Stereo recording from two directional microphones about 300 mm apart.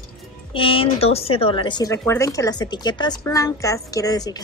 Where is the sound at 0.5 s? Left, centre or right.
Centre.